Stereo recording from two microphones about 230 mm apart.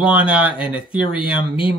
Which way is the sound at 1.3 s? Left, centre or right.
Left.